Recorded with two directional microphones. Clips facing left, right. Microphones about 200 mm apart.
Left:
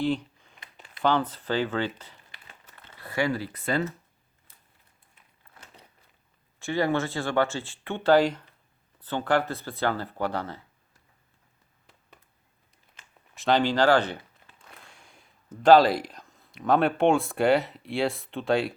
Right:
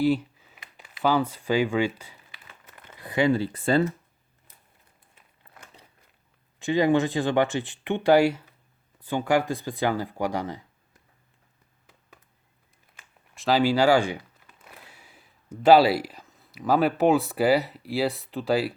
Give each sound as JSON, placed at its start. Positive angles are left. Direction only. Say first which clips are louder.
{"t": 0.0, "sound": "speech", "louder": "right 4 dB", "side_deg": -5}
{"t": 6.6, "sound": "speech", "louder": "right 5 dB", "side_deg": -15}
{"t": 13.3, "sound": "speech", "louder": "right 2 dB", "side_deg": 0}